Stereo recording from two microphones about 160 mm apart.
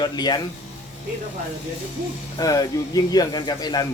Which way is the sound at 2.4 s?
20° left (ahead or behind).